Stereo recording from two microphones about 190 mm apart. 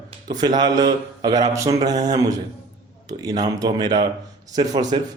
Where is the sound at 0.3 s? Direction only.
20° right (ahead or behind).